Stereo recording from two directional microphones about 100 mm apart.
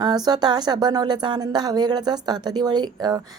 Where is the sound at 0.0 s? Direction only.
45° right (ahead or behind).